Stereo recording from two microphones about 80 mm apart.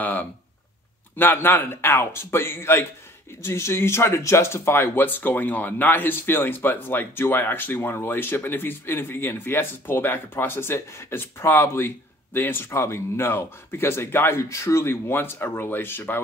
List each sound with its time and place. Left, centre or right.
0.0 s speech: left